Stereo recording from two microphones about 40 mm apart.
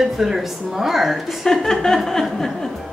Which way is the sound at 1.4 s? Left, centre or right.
Centre.